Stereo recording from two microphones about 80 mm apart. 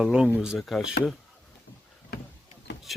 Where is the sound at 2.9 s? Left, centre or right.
Centre.